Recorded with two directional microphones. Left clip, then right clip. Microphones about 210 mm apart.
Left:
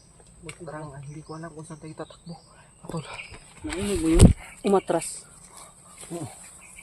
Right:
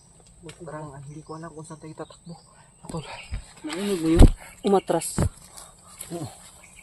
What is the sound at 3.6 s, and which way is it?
Speech, 30° right (ahead or behind).